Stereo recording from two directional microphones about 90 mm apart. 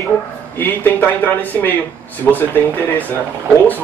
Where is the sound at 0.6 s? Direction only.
20° left (ahead or behind).